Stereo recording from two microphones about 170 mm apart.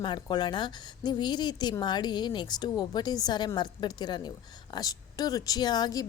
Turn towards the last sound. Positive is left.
turn(degrees=25)  # may be behind; listen again after turning